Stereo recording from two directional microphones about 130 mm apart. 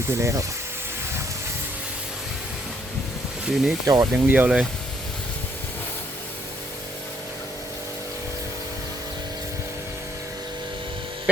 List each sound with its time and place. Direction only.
0.1 s speech: 25° right (ahead or behind)
3.4 s speech: centre (ahead or behind)
3.8 s speech: 30° right (ahead or behind)
4.1 s speech: 10° right (ahead or behind)